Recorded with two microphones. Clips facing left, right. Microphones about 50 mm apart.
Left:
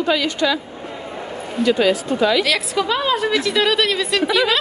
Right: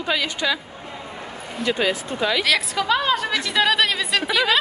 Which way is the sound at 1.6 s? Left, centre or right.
Centre.